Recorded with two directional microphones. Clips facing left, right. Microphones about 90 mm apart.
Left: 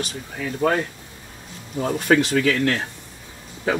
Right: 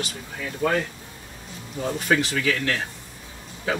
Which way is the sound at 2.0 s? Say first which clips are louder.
Left 5 dB; 45° left (ahead or behind).